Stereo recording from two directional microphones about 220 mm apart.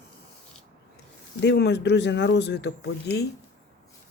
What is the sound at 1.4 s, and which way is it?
Speech, 50° left (ahead or behind).